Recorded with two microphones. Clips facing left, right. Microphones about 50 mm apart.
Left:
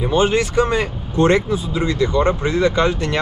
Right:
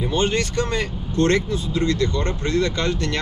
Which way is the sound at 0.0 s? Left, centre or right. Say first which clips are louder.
Left 5 dB; centre.